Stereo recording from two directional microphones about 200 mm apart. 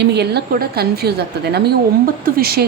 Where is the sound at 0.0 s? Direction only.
55° right (ahead or behind).